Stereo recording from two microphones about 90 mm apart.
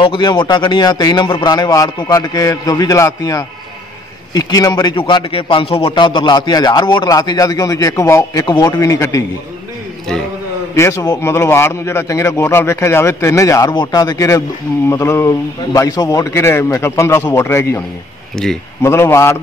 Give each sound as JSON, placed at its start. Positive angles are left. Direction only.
{"t": 0.0, "sound": "speech", "side_deg": 75}
{"t": 0.3, "sound": "a man's voice", "side_deg": 55}
{"t": 4.9, "sound": "a man's voice", "side_deg": 70}
{"t": 7.1, "sound": "a man's voice", "side_deg": 45}
{"t": 8.5, "sound": "a man's voice", "side_deg": 50}
{"t": 10.7, "sound": "a man's voice", "side_deg": 35}
{"t": 13.7, "sound": "a man's voice", "side_deg": 45}
{"t": 16.3, "sound": "a man's voice", "side_deg": 30}